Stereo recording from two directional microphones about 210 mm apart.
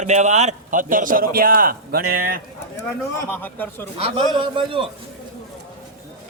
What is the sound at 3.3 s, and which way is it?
Speech, 10° left (ahead or behind).